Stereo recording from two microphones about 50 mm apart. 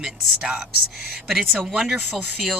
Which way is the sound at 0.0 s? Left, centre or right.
Centre.